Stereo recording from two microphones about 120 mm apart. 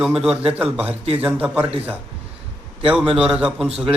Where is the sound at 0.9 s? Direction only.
55° right (ahead or behind).